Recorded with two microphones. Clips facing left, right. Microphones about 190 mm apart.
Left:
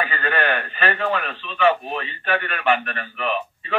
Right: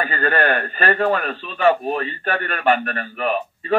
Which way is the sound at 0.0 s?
40° right (ahead or behind).